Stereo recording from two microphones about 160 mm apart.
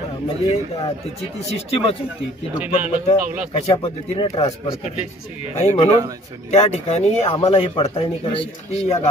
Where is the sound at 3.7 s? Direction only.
35° left (ahead or behind).